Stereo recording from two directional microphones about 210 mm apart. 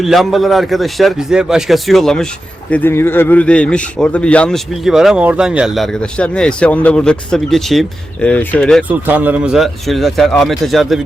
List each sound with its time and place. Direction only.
0.0 s speech: centre (ahead or behind)
8.9 s speech: 10° right (ahead or behind)